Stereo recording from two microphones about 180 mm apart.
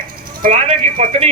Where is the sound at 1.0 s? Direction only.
35° right (ahead or behind).